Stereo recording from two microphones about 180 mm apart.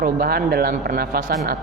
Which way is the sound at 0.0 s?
55° right (ahead or behind).